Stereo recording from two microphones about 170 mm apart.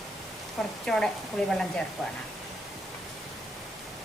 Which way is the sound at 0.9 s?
5° left (ahead or behind).